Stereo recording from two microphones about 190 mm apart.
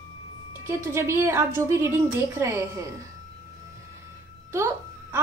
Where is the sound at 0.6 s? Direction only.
15° right (ahead or behind).